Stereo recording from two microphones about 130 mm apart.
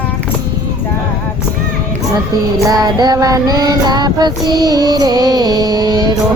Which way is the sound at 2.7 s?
30° right (ahead or behind).